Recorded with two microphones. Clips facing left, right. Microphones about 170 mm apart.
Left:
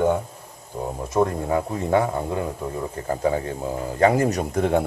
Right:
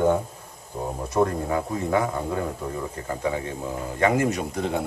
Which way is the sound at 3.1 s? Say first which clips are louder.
Left 5 dB; 35° left (ahead or behind).